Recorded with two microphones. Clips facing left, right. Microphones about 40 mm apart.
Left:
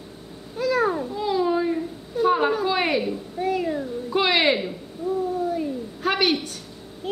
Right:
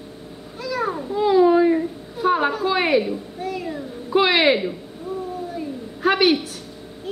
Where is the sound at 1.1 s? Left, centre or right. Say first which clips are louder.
Right 11 dB; centre.